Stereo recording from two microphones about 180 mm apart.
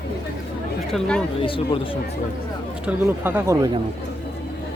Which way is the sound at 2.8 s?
10° right (ahead or behind).